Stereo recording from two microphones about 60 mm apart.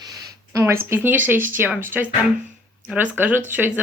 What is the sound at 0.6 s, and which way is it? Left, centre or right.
Speech, right.